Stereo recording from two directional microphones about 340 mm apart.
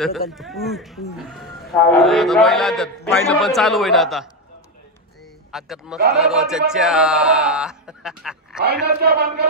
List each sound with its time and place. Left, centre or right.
0.3 s a man's voice: centre
5.5 s a man's voice: centre
8.6 s speech: right